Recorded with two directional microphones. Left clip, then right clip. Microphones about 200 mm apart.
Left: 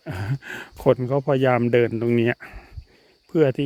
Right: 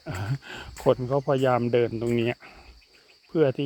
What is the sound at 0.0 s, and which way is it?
Speech, 35° left (ahead or behind).